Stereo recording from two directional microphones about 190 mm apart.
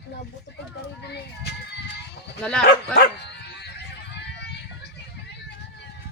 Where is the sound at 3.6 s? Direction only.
60° left (ahead or behind).